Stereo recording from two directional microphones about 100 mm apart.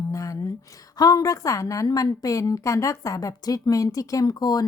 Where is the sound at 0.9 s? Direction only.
40° left (ahead or behind).